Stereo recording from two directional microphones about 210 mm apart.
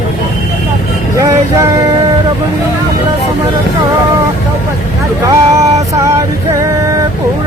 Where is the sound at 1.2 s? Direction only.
15° right (ahead or behind).